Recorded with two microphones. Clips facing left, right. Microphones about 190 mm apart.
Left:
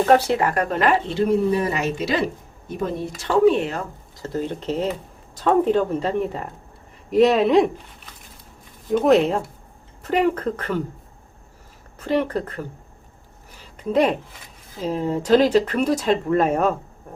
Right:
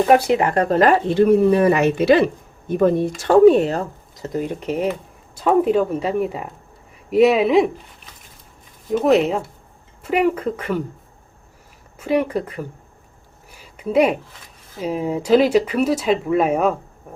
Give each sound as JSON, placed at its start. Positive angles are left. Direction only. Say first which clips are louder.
{"t": 0.0, "sound": "speech", "louder": "right 2 dB", "side_deg": -15}
{"t": 3.2, "sound": "speech", "louder": "right 5 dB", "side_deg": -45}
{"t": 4.2, "sound": "speech", "louder": "right 2 dB", "side_deg": -15}
{"t": 8.9, "sound": "speech", "louder": "even", "side_deg": -5}
{"t": 11.9, "sound": "speech", "louder": "right 2 dB", "side_deg": -10}
{"t": 13.6, "sound": "a sound", "louder": "right 2 dB", "side_deg": -10}
{"t": 14.8, "sound": "speech", "louder": "right 1 dB", "side_deg": -10}